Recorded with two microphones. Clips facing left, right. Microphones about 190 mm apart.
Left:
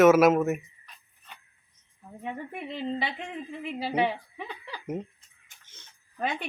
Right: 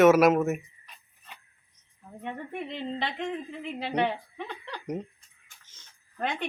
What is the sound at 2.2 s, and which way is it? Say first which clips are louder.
A woman's voice: even; 5° left (ahead or behind).